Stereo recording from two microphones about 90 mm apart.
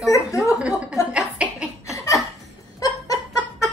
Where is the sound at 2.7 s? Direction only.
40° left (ahead or behind).